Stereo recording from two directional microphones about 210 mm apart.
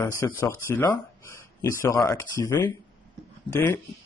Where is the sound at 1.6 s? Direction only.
15° left (ahead or behind).